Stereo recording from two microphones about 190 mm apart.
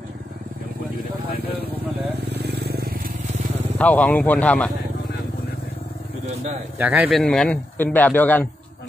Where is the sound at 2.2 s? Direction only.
60° right (ahead or behind); by 3.8 s 35° right (ahead or behind).